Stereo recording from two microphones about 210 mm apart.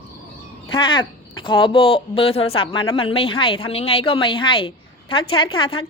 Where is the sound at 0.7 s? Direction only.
20° left (ahead or behind).